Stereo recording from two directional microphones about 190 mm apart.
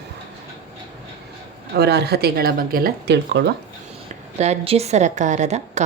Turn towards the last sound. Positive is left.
turn(degrees=-35)  # may be behind; listen again after turning